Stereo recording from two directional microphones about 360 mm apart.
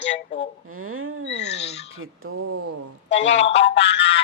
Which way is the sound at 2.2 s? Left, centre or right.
Right.